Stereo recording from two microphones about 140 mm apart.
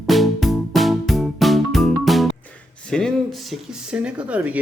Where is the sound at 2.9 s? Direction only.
5° left (ahead or behind).